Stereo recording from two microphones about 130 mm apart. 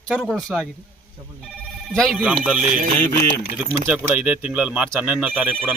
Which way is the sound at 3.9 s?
10° right (ahead or behind).